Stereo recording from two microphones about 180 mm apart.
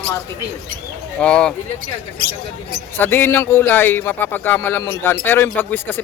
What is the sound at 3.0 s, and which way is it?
A man's voice, 10° left (ahead or behind).